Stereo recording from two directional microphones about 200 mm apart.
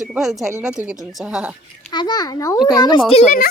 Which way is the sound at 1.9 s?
20° left (ahead or behind).